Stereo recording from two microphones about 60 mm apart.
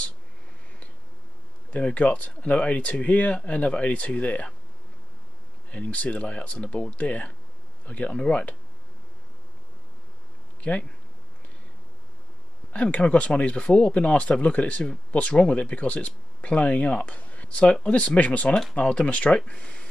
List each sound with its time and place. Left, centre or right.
1.7 s speech: left
5.7 s speech: left
10.6 s speech: left
12.7 s speech: left
18.5 s speech: centre
18.8 s speech: left